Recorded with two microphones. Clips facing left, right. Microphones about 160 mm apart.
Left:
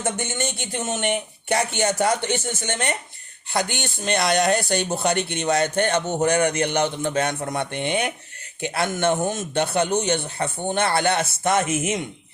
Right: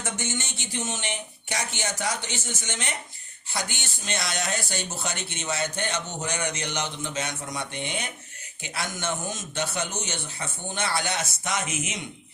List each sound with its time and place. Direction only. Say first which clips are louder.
0.0 s speech: left 6 dB; 55° left (ahead or behind)